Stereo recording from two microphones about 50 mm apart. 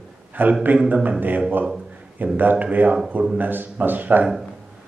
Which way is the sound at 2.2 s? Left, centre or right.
Right.